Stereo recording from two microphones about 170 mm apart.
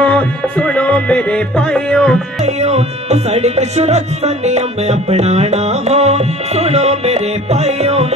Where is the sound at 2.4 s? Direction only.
40° right (ahead or behind).